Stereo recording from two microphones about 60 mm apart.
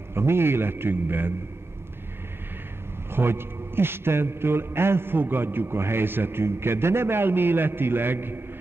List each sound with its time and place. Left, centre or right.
0.1 s a man's voice: right
3.1 s a man's voice: right